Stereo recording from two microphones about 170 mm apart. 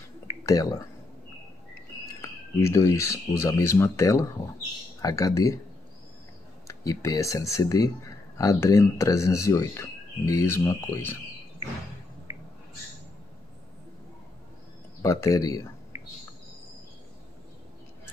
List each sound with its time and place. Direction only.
0.5 s speech: 20° left (ahead or behind)
2.2 s speech: 15° left (ahead or behind)
6.7 s speech: 20° left (ahead or behind)
15.0 s speech: 20° left (ahead or behind)